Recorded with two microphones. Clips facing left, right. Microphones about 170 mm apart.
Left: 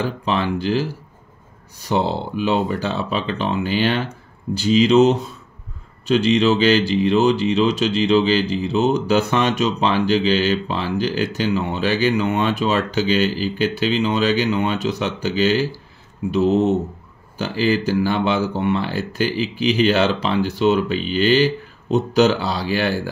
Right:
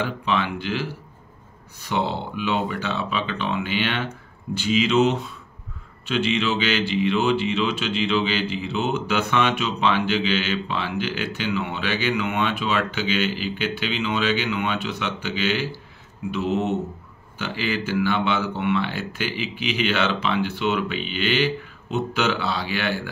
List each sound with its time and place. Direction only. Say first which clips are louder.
0.0 s speech: left 3 dB; 40° left (ahead or behind)